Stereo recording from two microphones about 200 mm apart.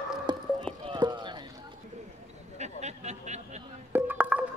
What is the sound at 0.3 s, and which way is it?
Speech, 20° right (ahead or behind).